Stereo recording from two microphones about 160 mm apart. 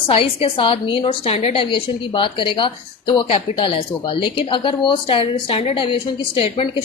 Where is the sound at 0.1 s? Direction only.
35° left (ahead or behind).